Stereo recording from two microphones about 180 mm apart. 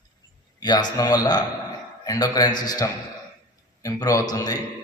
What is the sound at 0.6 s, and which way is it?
A man's voice, 25° left (ahead or behind).